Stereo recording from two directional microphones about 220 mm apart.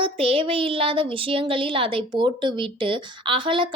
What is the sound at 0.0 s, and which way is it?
Speech, 25° right (ahead or behind).